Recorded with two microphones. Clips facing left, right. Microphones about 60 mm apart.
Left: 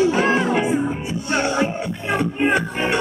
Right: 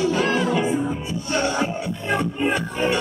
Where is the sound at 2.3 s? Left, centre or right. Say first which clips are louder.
Left 3 dB; left.